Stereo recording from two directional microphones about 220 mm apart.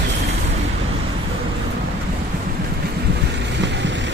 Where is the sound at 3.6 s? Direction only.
55° right (ahead or behind).